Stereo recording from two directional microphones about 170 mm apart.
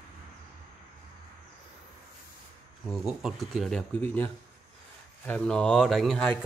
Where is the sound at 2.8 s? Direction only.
Centre (ahead or behind).